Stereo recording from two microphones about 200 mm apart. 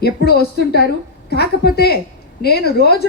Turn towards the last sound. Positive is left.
turn(degrees=55)  # may be behind; listen again after turning